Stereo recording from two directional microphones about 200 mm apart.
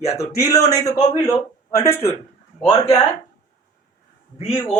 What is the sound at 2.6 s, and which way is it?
Speech, 30° left (ahead or behind).